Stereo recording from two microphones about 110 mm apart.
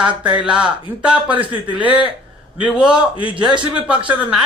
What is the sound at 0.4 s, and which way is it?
Speech, 10° right (ahead or behind).